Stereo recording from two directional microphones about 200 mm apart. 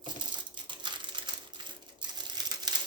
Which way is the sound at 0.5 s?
25° right (ahead or behind).